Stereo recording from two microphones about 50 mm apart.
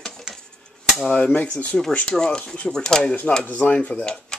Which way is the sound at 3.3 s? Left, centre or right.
Left.